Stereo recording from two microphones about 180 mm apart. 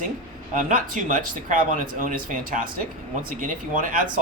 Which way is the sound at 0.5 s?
45° right (ahead or behind).